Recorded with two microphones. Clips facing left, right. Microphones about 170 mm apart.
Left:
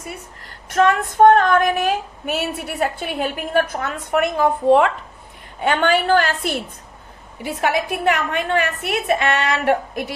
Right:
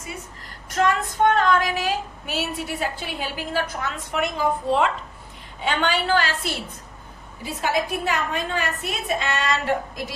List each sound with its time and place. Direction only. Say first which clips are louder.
0.8 s female singing: left 6 dB; 55° left (ahead or behind)
5.5 s a woman's voice: left 6 dB; 55° left (ahead or behind)
7.4 s a woman's voice: left 4 dB; 65° left (ahead or behind)